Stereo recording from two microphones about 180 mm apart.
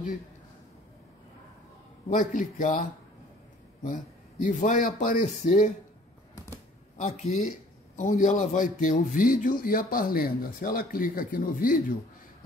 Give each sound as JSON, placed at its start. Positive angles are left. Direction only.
{"t": 2.0, "sound": "a man's voice", "side_deg": 45}
{"t": 3.8, "sound": "a man's voice", "side_deg": 45}
{"t": 7.0, "sound": "a man's voice", "side_deg": 45}